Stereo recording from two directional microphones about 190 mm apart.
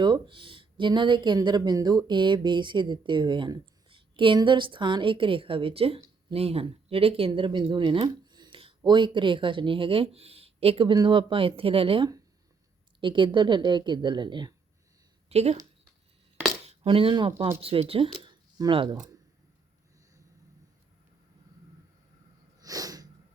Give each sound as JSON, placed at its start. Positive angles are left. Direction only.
{"t": 0.0, "sound": "speech", "side_deg": -25}
{"t": 16.6, "sound": "speech", "side_deg": -30}
{"t": 22.6, "sound": "snort", "side_deg": -20}